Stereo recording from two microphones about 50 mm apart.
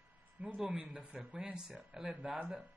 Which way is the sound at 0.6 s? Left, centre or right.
Right.